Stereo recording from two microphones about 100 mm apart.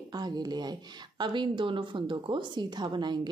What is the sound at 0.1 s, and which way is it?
A woman's voice, 45° right (ahead or behind).